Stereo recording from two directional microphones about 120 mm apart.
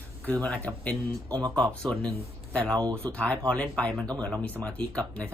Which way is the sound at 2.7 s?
30° right (ahead or behind).